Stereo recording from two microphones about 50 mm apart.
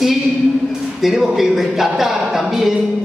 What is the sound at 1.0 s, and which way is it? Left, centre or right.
A man's voice, centre.